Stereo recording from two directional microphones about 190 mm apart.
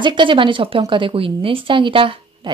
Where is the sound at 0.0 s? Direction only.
25° right (ahead or behind).